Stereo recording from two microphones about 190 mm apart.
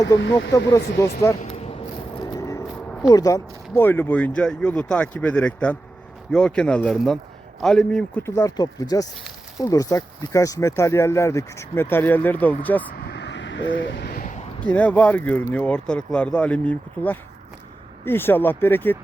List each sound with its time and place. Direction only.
0.2 s speech: 70° left (ahead or behind)
0.5 s speech: 15° left (ahead or behind)
2.2 s vehicle: 20° left (ahead or behind)
3.0 s speech: 20° left (ahead or behind); by 8.2 s 5° left (ahead or behind)
8.4 s speech: 20° left (ahead or behind)
13.0 s vehicle: 65° left (ahead or behind); by 14.4 s 45° left (ahead or behind)
14.6 s speech: 5° left (ahead or behind)